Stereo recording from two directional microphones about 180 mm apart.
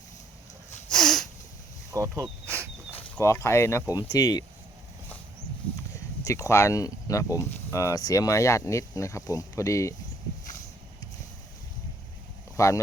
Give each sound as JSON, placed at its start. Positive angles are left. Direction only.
{"t": 0.9, "sound": "a sound", "side_deg": 0}
{"t": 1.9, "sound": "speech", "side_deg": -20}
{"t": 2.2, "sound": "insect", "side_deg": -15}
{"t": 2.9, "sound": "speech", "side_deg": 15}
{"t": 6.2, "sound": "speech", "side_deg": 15}
{"t": 12.5, "sound": "speech", "side_deg": 15}